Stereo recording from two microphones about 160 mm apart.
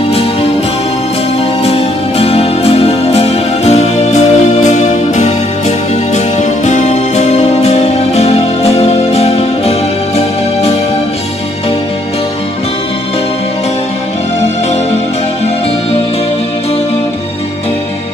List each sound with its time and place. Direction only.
1.6 s music: 40° left (ahead or behind)